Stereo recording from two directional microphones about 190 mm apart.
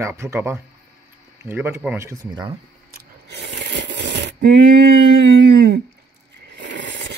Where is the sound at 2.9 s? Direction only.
65° right (ahead or behind).